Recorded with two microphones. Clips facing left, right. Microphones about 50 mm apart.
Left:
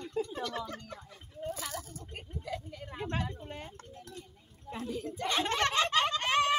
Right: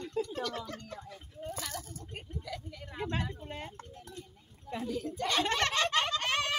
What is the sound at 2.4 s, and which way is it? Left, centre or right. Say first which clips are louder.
Speech: left 3 dB; left.